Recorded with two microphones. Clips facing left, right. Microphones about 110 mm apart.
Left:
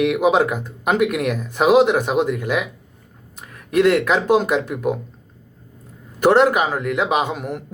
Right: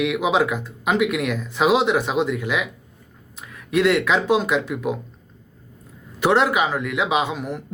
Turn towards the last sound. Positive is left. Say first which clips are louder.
# left 2 dB
turn(degrees=50)  # may be behind; listen again after turning